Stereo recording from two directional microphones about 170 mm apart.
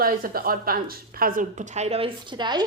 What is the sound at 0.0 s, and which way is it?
A woman's voice, 60° right (ahead or behind).